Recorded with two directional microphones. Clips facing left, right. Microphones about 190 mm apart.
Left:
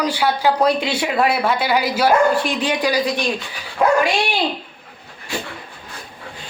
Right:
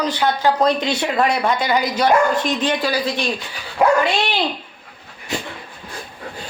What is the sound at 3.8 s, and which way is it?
Speech, 15° right (ahead or behind).